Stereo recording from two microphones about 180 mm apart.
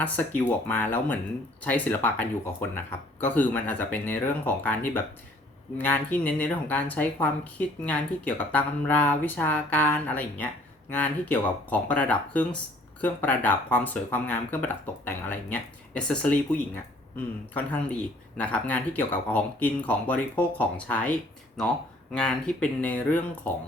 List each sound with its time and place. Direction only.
0.0 s speech: 10° left (ahead or behind)
18.3 s speech: 5° left (ahead or behind)
22.1 s speech: 5° left (ahead or behind)